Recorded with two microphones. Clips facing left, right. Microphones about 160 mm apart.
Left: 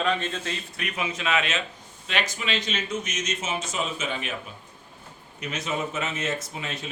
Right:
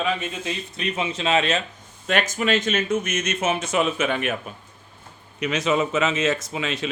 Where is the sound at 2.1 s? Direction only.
45° right (ahead or behind).